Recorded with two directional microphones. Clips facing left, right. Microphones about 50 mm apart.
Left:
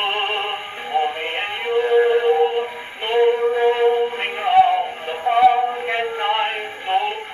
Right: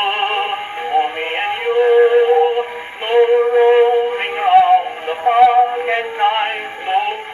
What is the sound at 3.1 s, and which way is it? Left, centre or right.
Synthetic singing, centre.